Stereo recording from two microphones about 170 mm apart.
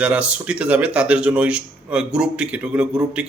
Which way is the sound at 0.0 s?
5° right (ahead or behind).